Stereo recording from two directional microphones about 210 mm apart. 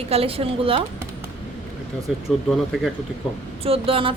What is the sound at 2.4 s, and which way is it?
Speech, centre (ahead or behind).